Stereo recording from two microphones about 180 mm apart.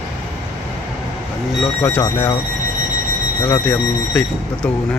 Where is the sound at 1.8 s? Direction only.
10° left (ahead or behind).